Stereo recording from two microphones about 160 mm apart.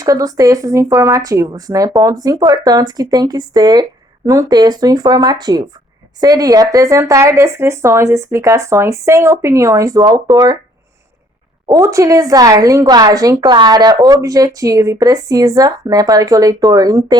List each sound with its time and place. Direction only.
0.0 s a woman's voice: 20° right (ahead or behind)
11.7 s a woman's voice: 20° right (ahead or behind)